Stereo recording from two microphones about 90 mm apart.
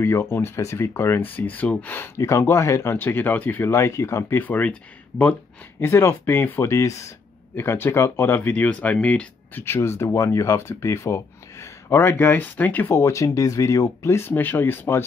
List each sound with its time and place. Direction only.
0.0 s speech: 25° left (ahead or behind)
2.1 s speech: 30° left (ahead or behind)
5.8 s speech: 30° left (ahead or behind)
12.9 s speech: 35° left (ahead or behind)